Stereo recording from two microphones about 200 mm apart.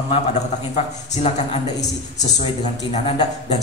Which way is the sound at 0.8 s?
35° left (ahead or behind).